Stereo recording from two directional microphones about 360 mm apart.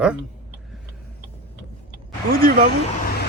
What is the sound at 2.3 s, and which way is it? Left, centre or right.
Speech, right.